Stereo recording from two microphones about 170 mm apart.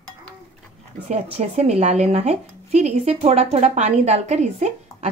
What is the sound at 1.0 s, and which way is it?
Speech, 40° right (ahead or behind).